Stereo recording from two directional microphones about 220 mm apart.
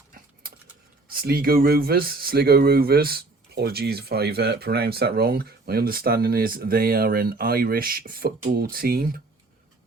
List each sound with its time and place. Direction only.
1.1 s speech: 45° right (ahead or behind)